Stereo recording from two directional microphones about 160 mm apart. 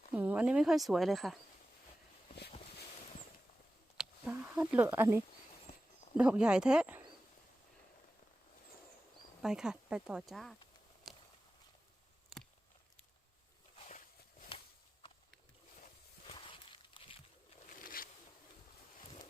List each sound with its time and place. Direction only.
0.1 s speech: 10° right (ahead or behind)
4.0 s a sound: 5° right (ahead or behind)
4.5 s speech: 5° right (ahead or behind)
9.4 s speech: 5° right (ahead or behind)
11.1 s walk: centre (ahead or behind)
16.2 s a sound: 35° left (ahead or behind)
17.7 s boat: 60° left (ahead or behind)